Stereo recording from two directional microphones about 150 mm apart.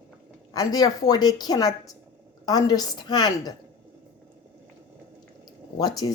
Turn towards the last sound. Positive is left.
turn(degrees=25)  # may be behind; listen again after turning